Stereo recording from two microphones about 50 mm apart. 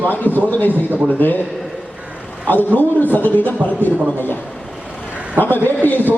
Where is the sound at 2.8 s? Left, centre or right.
Left.